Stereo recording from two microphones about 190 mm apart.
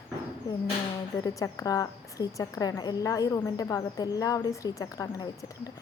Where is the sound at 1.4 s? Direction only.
20° left (ahead or behind).